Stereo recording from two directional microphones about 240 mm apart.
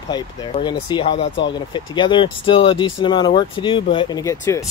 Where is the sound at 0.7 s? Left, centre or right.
Left.